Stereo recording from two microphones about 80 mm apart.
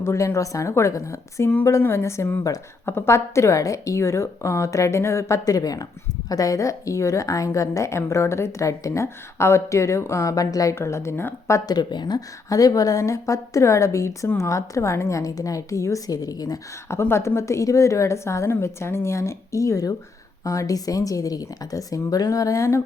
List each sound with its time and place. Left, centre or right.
0.0 s a woman's voice: left
10.8 s a woman's voice: left
11.7 s speech: left
12.5 s a woman's voice: left
16.9 s a woman's voice: left